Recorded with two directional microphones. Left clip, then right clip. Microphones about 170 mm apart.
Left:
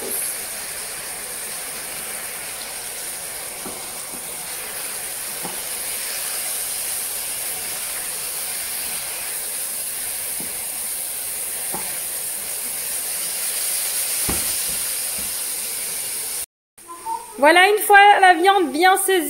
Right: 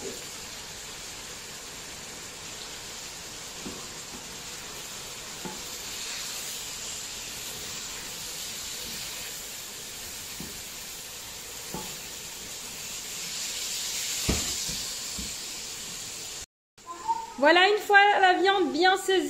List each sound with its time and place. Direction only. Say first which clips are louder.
17.4 s a woman's voice: left 7 dB; 25° left (ahead or behind)